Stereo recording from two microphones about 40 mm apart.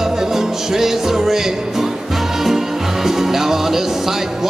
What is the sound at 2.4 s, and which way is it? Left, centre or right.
Music, centre.